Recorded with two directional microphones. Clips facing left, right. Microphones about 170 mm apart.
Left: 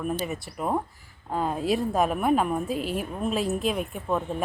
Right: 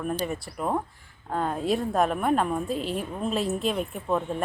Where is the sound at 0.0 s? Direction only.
5° left (ahead or behind).